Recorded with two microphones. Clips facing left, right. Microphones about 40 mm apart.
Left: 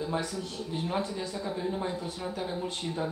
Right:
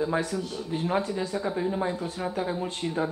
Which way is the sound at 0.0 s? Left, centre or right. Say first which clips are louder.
Right 5 dB; right.